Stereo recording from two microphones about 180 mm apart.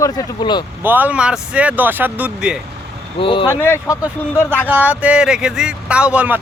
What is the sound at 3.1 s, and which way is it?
Speech, 30° left (ahead or behind).